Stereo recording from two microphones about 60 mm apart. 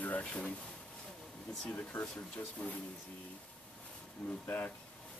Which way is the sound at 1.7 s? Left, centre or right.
Left.